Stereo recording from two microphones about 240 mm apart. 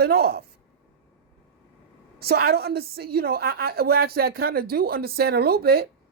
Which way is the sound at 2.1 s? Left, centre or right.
Right.